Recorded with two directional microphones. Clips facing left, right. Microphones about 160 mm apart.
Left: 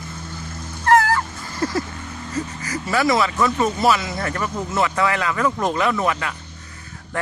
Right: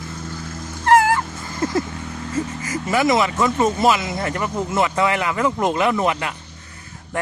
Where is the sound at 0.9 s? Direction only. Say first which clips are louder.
Right 1 dB; 20° right (ahead or behind).